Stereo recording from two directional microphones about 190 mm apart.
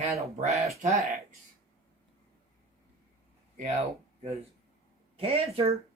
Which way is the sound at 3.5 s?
40° right (ahead or behind).